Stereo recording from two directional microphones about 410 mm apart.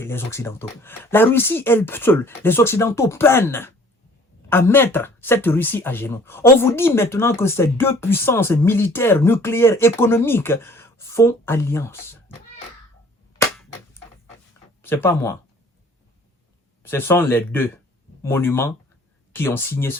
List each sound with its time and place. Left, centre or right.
0.0 s speech: centre
14.8 s speech: centre
16.8 s speech: centre